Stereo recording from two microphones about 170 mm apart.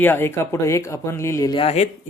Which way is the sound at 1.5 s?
35° left (ahead or behind).